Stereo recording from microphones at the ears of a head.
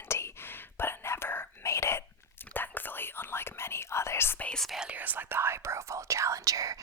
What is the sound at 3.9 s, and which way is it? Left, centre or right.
Whispering, left.